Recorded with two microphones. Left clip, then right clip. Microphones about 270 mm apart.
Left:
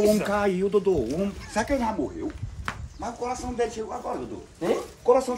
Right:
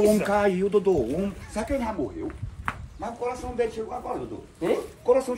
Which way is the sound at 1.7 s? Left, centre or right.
Left.